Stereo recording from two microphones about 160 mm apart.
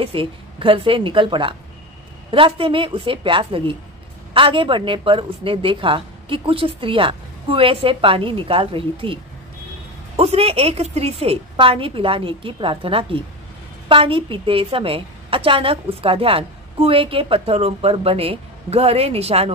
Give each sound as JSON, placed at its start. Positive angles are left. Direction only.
{"t": 0.0, "sound": "a woman's voice", "side_deg": -35}